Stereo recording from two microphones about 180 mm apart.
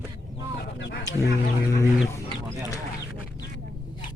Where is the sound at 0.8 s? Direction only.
75° left (ahead or behind).